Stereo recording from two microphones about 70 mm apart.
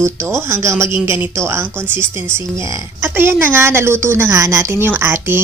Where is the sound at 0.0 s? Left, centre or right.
Right.